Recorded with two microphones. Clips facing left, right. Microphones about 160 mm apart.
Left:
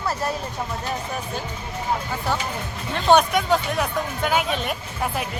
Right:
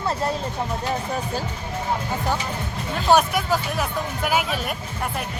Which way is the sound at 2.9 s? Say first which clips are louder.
Left 1 dB; 5° right (ahead or behind).